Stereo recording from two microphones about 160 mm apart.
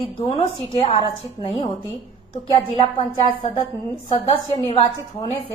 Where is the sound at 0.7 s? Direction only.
30° left (ahead or behind).